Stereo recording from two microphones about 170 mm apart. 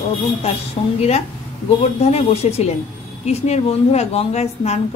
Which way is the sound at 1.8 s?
40° left (ahead or behind).